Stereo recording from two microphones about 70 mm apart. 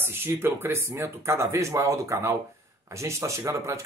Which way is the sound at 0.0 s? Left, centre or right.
Right.